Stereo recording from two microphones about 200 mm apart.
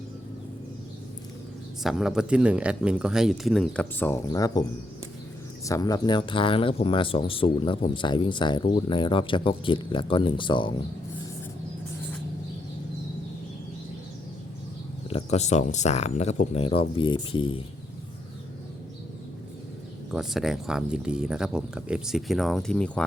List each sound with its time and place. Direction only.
1.8 s speech: centre (ahead or behind); by 4.6 s 15° left (ahead or behind)
5.6 s speech: 20° left (ahead or behind)
15.1 s speech: 35° left (ahead or behind)
20.1 s speech: centre (ahead or behind)